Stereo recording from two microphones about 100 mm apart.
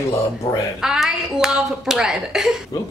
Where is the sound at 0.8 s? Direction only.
5° right (ahead or behind).